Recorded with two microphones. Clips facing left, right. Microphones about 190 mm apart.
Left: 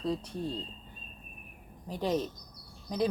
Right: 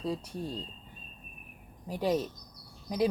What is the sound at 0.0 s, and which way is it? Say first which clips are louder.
Speech: left 1 dB; 10° right (ahead or behind).